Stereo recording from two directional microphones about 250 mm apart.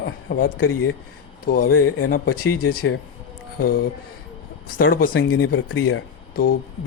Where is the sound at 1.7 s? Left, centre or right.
Left.